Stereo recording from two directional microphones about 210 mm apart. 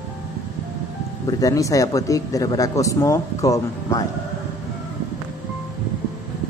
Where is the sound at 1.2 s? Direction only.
15° left (ahead or behind).